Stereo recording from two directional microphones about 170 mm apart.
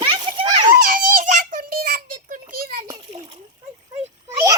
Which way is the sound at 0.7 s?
55° right (ahead or behind).